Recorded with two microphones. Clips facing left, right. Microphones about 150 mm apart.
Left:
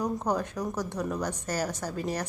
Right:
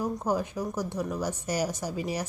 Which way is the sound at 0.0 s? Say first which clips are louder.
Even; 10° right (ahead or behind).